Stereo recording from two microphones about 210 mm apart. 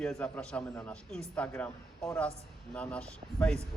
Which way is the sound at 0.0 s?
5° left (ahead or behind).